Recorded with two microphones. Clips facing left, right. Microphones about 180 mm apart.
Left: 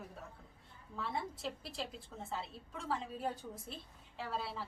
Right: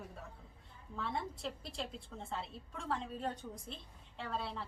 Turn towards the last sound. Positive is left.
turn(degrees=5)  # may be behind; listen again after turning